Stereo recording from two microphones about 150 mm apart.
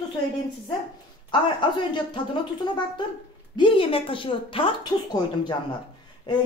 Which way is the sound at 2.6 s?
30° left (ahead or behind).